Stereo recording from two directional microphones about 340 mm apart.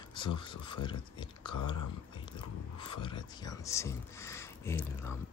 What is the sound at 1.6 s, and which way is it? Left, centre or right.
Speech, left.